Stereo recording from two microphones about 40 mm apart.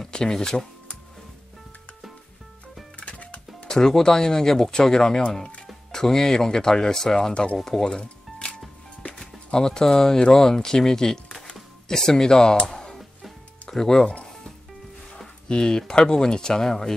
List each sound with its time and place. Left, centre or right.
0.0 s speech: centre
3.0 s music: left
3.6 s speech: centre
12.7 s music: centre
13.7 s speech: centre
15.4 s speech: centre